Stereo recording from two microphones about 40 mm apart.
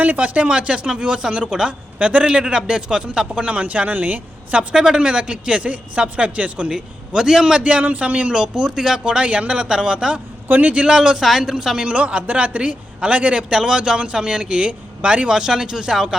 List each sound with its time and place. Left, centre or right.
0.0 s a man's voice: right
2.0 s a man's voice: right
3.5 s a man's voice: right
4.7 s a man's voice: right
6.7 s speech: centre
7.6 s a man's voice: right
8.4 s a man's voice: right
9.0 s a man's voice: right
10.5 s a man's voice: right
10.8 s speech: centre
11.2 s speech: centre
11.9 s a man's voice: right
13.5 s a man's voice: centre